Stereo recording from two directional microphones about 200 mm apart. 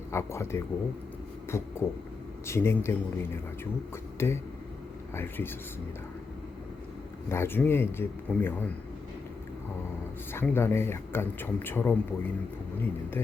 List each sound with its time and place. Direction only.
0.1 s speech: 15° left (ahead or behind)
7.3 s speech: 10° left (ahead or behind)
10.3 s speech: 10° left (ahead or behind)